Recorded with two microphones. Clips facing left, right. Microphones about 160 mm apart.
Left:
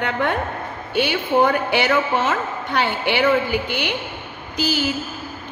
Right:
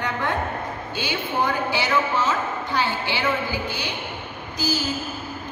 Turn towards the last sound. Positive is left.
turn(degrees=65)  # may be behind; listen again after turning